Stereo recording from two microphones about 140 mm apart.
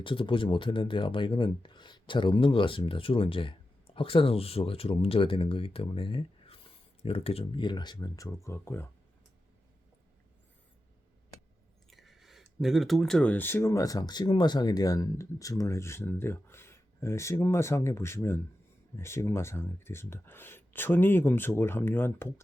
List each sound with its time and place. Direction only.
0.0 s speech: 35° left (ahead or behind)
8.4 s speech: 15° left (ahead or behind)
11.9 s speech: centre (ahead or behind); by 22.3 s 15° left (ahead or behind)